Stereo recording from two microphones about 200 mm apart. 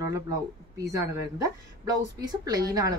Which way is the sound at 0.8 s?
15° right (ahead or behind).